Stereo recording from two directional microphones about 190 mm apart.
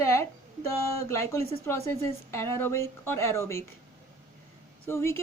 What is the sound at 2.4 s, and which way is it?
A woman's voice, 15° left (ahead or behind).